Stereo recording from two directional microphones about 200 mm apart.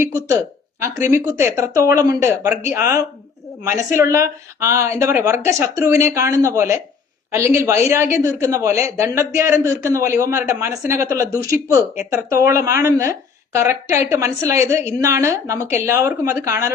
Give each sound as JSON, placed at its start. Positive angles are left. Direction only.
{"t": 0.0, "sound": "a woman's voice", "side_deg": -15}